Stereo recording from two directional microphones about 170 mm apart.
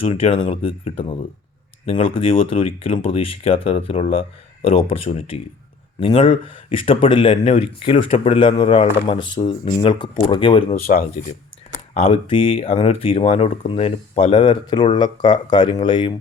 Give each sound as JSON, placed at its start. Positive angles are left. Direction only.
{"t": 0.0, "sound": "speech", "side_deg": 35}
{"t": 11.2, "sound": "speech", "side_deg": 45}
{"t": 11.9, "sound": "speech", "side_deg": 30}